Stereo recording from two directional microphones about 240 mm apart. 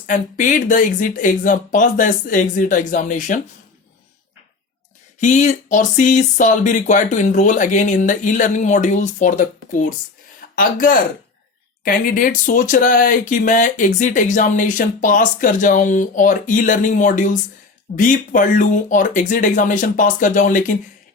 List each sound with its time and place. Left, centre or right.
0.1 s speech: left
5.2 s speech: left